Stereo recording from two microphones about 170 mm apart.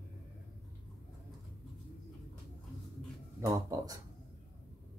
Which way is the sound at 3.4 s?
20° right (ahead or behind).